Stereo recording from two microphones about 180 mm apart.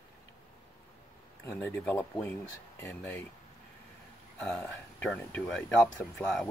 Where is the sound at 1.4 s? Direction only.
10° left (ahead or behind).